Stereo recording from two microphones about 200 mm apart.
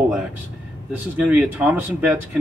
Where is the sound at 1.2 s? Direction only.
10° right (ahead or behind).